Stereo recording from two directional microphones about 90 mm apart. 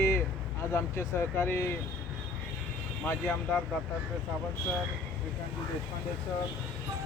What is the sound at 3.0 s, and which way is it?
Speech, 15° left (ahead or behind).